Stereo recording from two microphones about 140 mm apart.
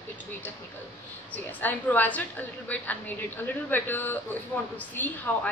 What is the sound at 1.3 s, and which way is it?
A woman's voice, 10° left (ahead or behind).